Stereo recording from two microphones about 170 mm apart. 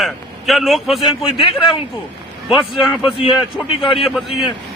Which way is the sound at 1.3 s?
30° left (ahead or behind).